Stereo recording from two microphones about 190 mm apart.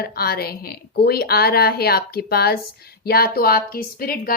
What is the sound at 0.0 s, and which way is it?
A woman's voice, 55° left (ahead or behind).